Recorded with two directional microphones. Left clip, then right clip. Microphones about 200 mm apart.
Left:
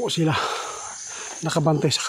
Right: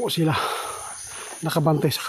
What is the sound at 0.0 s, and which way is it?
Speech, centre (ahead or behind).